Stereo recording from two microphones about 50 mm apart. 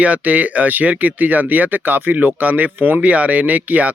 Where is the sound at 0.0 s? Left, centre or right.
Right.